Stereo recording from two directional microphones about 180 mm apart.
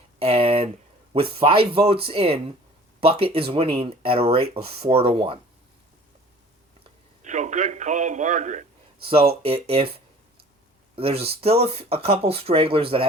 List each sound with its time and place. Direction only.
0.2 s a sound: 30° right (ahead or behind)
1.1 s speech: 30° right (ahead or behind)
7.2 s a man's voice: 45° right (ahead or behind)
9.0 s speech: 30° right (ahead or behind)